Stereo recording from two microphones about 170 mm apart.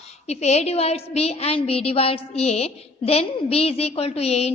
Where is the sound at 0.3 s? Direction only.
40° left (ahead or behind).